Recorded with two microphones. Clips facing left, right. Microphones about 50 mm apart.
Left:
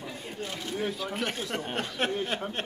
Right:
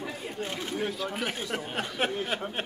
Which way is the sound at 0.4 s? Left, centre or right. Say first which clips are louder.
Right 1 dB; right.